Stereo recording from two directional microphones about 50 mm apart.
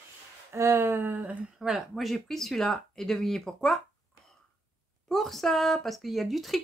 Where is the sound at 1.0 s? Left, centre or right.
Right.